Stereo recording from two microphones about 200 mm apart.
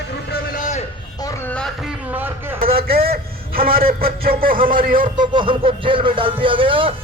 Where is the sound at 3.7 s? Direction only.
45° right (ahead or behind).